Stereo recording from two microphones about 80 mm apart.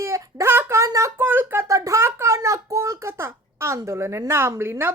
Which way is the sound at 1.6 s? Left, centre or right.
Right.